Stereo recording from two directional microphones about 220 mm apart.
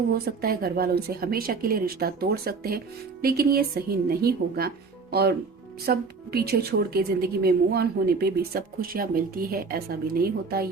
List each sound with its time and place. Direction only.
0.1 s a woman's voice: 45° right (ahead or behind)
5.8 s a woman's voice: 45° right (ahead or behind)